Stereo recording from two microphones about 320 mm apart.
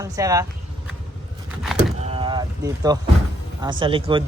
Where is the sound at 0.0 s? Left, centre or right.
Centre.